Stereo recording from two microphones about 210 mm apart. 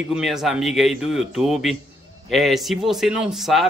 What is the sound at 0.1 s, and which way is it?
Speech, centre (ahead or behind).